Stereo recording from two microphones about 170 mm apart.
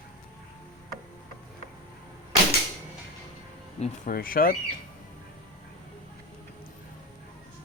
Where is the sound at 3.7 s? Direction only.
40° left (ahead or behind).